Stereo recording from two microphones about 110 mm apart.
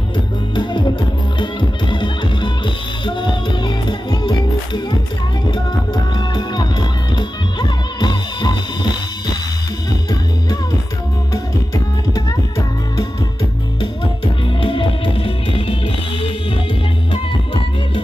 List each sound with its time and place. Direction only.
0.6 s music: 45° left (ahead or behind)
6.1 s music: 40° left (ahead or behind)
14.6 s music: 50° left (ahead or behind)